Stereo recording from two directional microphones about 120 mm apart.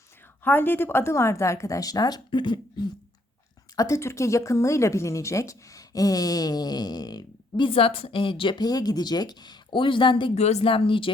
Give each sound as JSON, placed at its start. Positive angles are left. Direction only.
{"t": 0.4, "sound": "speech", "side_deg": 15}
{"t": 3.8, "sound": "speech", "side_deg": 25}
{"t": 7.7, "sound": "speech", "side_deg": 50}
{"t": 10.3, "sound": "speech", "side_deg": 65}